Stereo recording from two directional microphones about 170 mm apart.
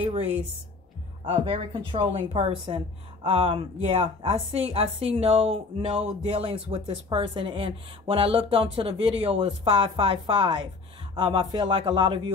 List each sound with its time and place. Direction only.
0.0 s a woman's voice: 35° right (ahead or behind)